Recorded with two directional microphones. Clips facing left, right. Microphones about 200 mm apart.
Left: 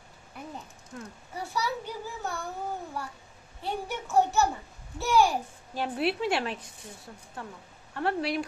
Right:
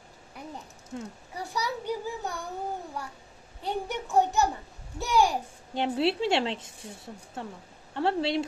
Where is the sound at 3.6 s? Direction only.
20° right (ahead or behind).